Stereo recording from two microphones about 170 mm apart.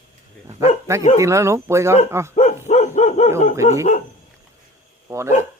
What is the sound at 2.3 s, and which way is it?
Dog, 45° left (ahead or behind).